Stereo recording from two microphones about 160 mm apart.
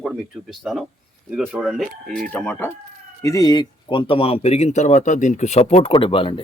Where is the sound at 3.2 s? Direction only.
20° left (ahead or behind).